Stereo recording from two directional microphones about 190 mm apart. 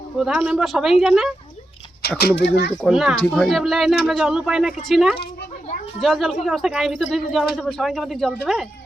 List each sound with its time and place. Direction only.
0.2 s speech: 5° right (ahead or behind)
2.0 s speech: 60° left (ahead or behind)
2.8 s speech: centre (ahead or behind)